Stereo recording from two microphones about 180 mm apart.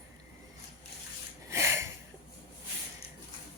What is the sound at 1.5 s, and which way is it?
Sniff, 15° right (ahead or behind).